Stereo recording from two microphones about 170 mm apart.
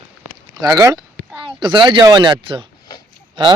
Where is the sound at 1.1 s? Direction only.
10° right (ahead or behind).